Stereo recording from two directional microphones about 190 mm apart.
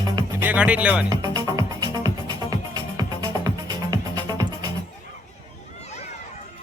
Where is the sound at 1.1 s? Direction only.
20° right (ahead or behind).